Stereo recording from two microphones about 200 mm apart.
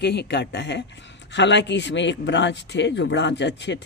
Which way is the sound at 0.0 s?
55° left (ahead or behind).